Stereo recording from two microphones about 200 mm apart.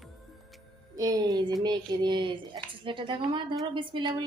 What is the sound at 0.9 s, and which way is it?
Speech, 15° right (ahead or behind).